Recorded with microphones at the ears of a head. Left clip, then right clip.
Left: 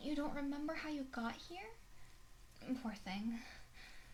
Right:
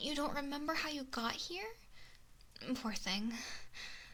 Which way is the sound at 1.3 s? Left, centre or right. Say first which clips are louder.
Right 7 dB; right.